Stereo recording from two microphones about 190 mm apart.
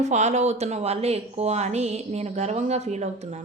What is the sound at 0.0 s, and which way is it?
Speech, 40° right (ahead or behind).